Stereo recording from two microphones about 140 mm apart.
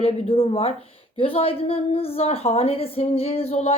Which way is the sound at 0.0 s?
45° left (ahead or behind).